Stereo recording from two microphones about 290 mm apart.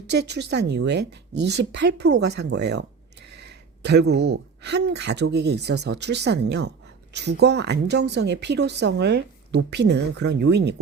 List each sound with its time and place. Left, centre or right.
0.1 s a woman's voice: right
2.2 s a sound: right
4.2 s a woman's voice: right